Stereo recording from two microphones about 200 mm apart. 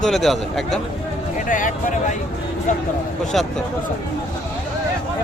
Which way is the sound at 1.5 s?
40° left (ahead or behind).